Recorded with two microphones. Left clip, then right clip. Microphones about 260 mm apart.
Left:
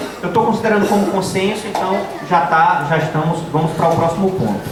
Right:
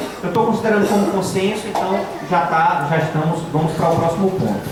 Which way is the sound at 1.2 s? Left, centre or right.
Centre.